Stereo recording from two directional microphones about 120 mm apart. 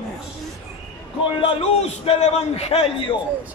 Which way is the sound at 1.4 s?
55° left (ahead or behind).